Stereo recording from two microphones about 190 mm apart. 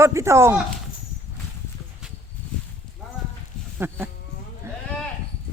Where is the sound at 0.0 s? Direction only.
15° right (ahead or behind).